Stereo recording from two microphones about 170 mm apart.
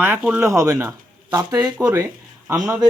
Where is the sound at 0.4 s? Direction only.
15° right (ahead or behind).